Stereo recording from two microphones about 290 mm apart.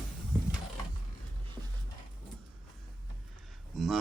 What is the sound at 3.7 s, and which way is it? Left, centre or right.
Speech, centre.